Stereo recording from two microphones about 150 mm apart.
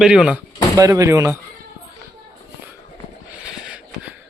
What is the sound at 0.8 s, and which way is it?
Speech, 25° right (ahead or behind).